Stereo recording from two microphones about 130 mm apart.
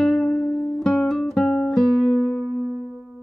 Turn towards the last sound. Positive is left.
turn(degrees=5)  # may be behind; listen again after turning